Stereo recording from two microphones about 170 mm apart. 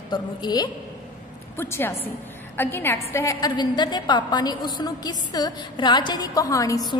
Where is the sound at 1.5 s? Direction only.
10° left (ahead or behind).